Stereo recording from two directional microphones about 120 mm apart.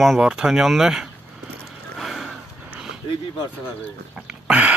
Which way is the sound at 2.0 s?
Centre (ahead or behind).